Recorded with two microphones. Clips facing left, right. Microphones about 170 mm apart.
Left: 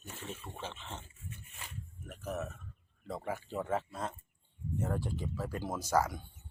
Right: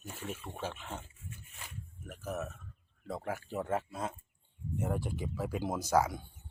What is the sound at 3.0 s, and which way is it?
Speech, 5° right (ahead or behind).